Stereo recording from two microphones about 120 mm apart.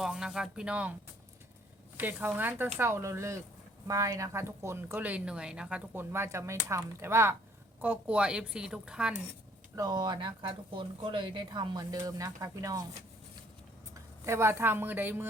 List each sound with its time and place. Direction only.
0.0 s speech: 5° right (ahead or behind)
2.0 s a woman's voice: 15° right (ahead or behind)
9.7 s speech: 35° right (ahead or behind)
13.9 s speech: 20° right (ahead or behind)